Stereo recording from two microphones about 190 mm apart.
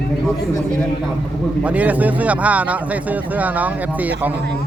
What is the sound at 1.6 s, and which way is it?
Speech, 5° right (ahead or behind).